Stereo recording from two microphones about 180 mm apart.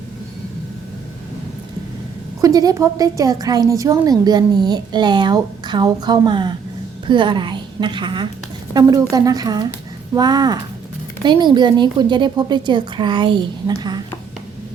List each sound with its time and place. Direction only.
2.4 s a woman's voice: 20° right (ahead or behind)